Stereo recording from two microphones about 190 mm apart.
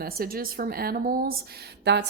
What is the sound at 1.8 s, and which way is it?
Speech, 65° right (ahead or behind).